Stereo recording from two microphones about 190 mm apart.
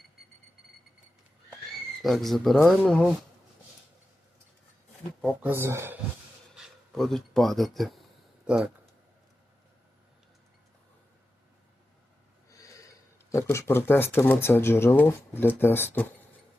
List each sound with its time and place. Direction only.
2.0 s speech: centre (ahead or behind)
5.4 s speech: 10° right (ahead or behind)
6.6 s speech: centre (ahead or behind)
12.5 s a sound: 15° left (ahead or behind)
13.3 s speech: 15° left (ahead or behind)